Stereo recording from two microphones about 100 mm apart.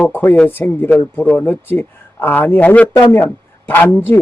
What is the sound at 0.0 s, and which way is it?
A man's voice, 20° left (ahead or behind).